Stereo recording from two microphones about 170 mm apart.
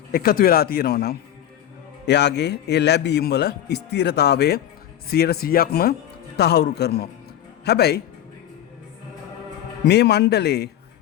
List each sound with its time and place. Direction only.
0.1 s speech: 60° left (ahead or behind)
2.0 s a man's voice: 85° left; by 8.0 s 70° left (ahead or behind)
9.8 s a man's voice: 80° left